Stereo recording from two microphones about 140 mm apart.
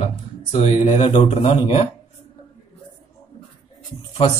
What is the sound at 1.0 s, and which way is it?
Speech, 40° left (ahead or behind).